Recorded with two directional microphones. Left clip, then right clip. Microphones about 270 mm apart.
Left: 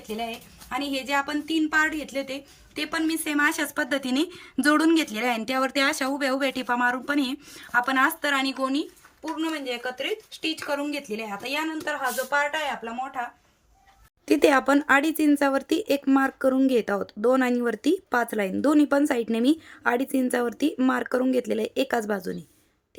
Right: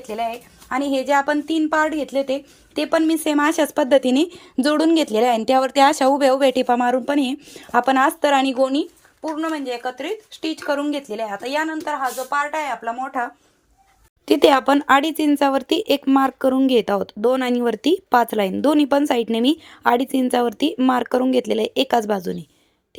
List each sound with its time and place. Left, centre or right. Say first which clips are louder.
0.9 s speech: right 9 dB; centre
14.3 s speech: right 5 dB; centre